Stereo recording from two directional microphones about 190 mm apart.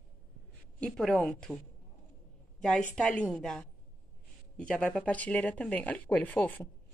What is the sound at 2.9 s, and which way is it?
Speech, 5° left (ahead or behind).